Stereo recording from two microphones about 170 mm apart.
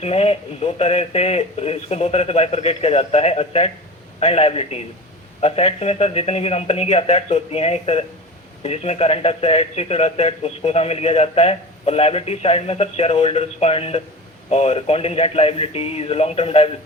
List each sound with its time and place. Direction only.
0.0 s a man's voice: 35° left (ahead or behind)